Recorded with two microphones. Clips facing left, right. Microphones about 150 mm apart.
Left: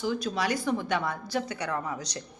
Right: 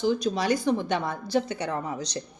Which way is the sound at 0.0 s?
25° right (ahead or behind).